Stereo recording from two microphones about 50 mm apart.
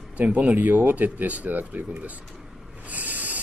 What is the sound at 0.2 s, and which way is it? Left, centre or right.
Speech, right.